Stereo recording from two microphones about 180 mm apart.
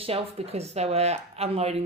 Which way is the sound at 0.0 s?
35° right (ahead or behind).